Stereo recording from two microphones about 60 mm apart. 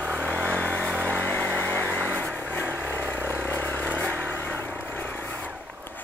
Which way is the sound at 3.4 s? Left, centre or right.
Left.